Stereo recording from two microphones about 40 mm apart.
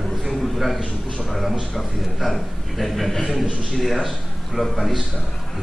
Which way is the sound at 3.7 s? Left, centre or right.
Centre.